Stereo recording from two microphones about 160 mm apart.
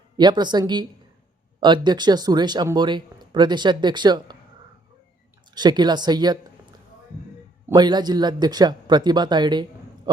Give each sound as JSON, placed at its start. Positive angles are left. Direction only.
{"t": 0.2, "sound": "speech", "side_deg": -25}
{"t": 5.5, "sound": "speech", "side_deg": -25}
{"t": 7.7, "sound": "speech", "side_deg": -25}